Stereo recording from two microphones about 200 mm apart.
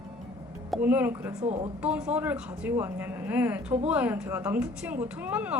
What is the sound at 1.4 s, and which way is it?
Speech, 35° right (ahead or behind).